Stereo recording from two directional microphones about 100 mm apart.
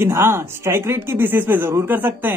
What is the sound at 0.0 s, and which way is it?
Speech, 25° right (ahead or behind).